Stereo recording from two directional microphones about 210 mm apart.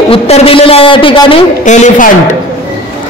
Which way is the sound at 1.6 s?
35° left (ahead or behind).